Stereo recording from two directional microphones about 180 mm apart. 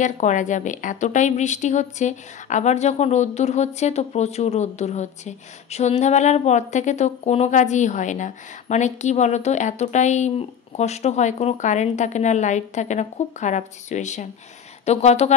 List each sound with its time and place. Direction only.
0.0 s a woman's voice: 45° left (ahead or behind)